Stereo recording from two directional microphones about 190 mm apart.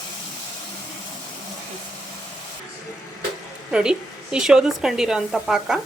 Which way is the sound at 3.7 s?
5° right (ahead or behind).